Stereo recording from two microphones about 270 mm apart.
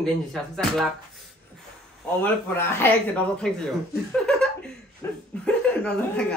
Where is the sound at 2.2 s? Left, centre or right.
Centre.